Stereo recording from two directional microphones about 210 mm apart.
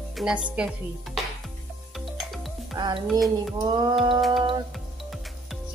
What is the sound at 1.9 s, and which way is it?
Music, centre (ahead or behind).